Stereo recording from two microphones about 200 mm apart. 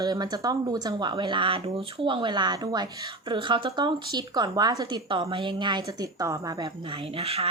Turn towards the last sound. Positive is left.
turn(degrees=-30)  # may be behind; listen again after turning